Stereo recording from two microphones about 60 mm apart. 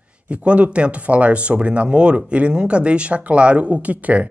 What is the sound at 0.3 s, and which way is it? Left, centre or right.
Speech, right.